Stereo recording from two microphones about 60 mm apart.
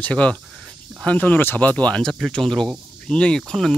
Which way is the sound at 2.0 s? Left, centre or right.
Centre.